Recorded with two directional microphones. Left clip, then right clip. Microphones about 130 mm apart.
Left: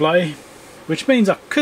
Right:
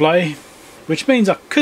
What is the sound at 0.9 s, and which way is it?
Speech, 15° right (ahead or behind).